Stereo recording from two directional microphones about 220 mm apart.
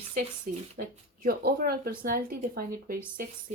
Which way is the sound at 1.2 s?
45° right (ahead or behind).